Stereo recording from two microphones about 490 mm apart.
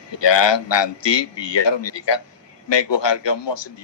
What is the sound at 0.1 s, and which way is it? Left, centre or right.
A man's voice, left.